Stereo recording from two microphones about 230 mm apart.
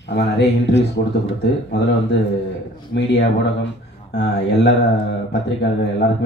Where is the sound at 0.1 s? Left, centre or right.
Left.